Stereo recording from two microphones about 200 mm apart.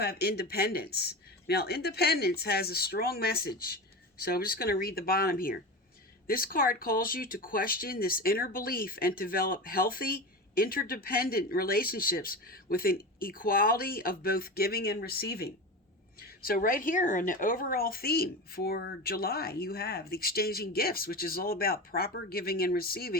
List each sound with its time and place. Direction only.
0.0 s speech: 55° left (ahead or behind)